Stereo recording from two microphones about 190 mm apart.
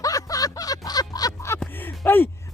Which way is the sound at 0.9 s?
20° left (ahead or behind).